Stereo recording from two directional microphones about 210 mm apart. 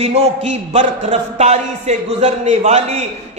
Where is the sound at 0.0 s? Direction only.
30° right (ahead or behind).